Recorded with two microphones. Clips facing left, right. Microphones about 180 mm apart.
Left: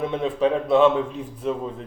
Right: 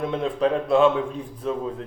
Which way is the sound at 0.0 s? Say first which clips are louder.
Left 1 dB; 5° left (ahead or behind).